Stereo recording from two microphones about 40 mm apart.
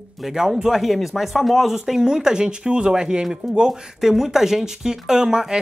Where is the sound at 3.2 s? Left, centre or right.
Centre.